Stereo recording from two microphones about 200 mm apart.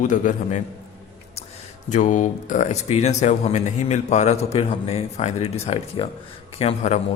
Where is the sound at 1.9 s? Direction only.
40° left (ahead or behind).